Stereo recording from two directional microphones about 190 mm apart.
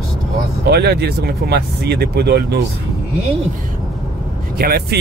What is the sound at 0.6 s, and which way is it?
Speech, 60° right (ahead or behind).